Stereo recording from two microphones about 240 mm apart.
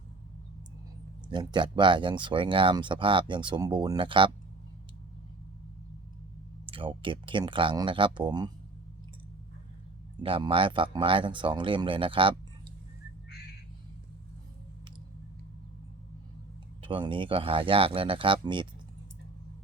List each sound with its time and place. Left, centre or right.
1.3 s speech: centre
6.7 s speech: right
10.2 s speech: right
16.8 s speech: right